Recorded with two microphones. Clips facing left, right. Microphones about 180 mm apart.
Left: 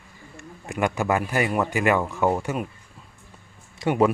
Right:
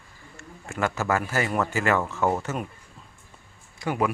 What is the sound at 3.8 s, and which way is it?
Speech, 25° left (ahead or behind).